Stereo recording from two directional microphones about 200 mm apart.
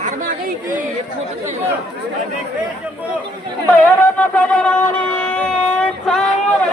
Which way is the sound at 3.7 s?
10° left (ahead or behind).